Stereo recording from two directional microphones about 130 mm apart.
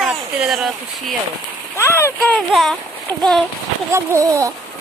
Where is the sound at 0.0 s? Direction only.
5° right (ahead or behind).